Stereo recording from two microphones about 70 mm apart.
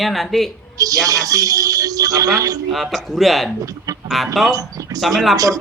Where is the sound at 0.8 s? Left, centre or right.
Right.